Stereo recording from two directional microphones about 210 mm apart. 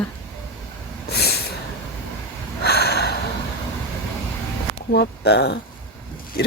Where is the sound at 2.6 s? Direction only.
50° left (ahead or behind).